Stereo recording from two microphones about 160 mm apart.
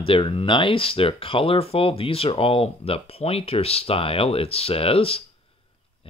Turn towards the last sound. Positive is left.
turn(degrees=35)  # may be behind; listen again after turning